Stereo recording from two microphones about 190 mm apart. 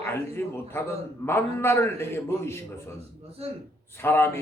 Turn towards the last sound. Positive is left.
turn(degrees=10)  # may be behind; listen again after turning